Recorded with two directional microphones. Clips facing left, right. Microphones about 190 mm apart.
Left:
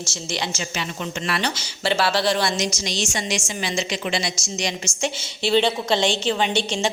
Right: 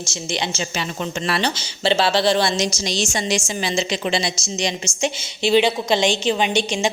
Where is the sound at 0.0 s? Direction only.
20° right (ahead or behind).